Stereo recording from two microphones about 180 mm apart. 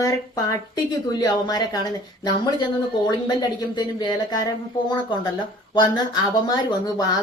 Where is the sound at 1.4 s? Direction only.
20° left (ahead or behind).